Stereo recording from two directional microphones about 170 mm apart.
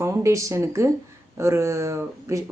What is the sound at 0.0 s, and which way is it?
Speech, 15° right (ahead or behind).